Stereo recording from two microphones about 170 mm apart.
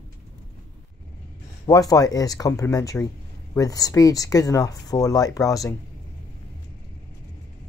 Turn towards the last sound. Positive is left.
turn(degrees=20)  # may be behind; listen again after turning